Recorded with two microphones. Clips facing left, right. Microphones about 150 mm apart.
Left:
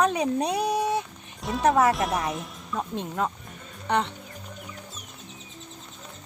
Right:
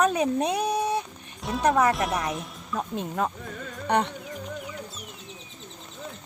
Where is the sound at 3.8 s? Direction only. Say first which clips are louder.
Right 1 dB; 15° right (ahead or behind).